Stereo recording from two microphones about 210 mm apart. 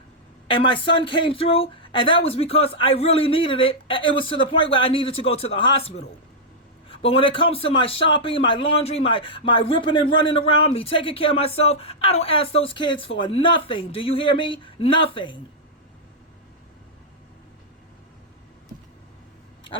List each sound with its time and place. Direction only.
0.4 s a man's voice: 25° left (ahead or behind)